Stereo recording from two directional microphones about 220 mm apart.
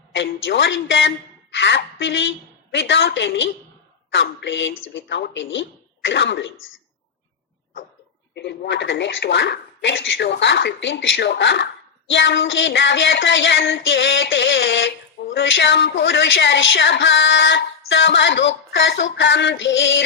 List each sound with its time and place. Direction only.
0.1 s speech: 55° left (ahead or behind)
8.4 s speech: 55° left (ahead or behind)